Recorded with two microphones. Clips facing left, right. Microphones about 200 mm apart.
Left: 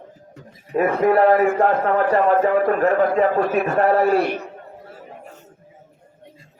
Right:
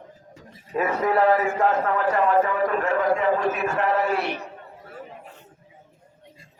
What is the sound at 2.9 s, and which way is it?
Speech, 40° left (ahead or behind).